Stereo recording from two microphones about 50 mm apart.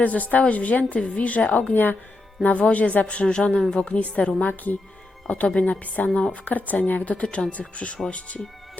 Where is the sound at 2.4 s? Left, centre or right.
Left.